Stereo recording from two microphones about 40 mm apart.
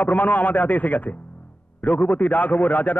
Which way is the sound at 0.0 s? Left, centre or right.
Left.